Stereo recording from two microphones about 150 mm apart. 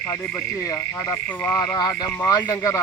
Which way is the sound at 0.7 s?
20° left (ahead or behind).